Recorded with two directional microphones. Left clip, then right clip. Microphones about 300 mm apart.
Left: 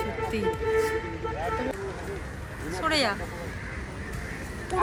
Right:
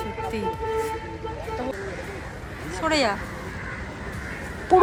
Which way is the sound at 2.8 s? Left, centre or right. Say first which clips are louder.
Right 3 dB; centre.